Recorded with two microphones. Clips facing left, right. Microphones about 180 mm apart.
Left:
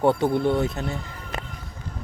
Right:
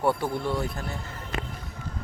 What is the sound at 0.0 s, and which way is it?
Speech, 20° left (ahead or behind).